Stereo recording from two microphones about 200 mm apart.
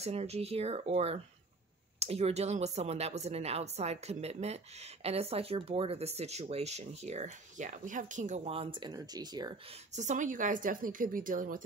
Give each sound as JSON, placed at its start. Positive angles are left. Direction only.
{"t": 0.0, "sound": "speech", "side_deg": -30}
{"t": 9.9, "sound": "speech", "side_deg": -40}